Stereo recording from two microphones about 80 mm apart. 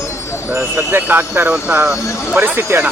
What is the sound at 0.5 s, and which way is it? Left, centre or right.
Speech, right.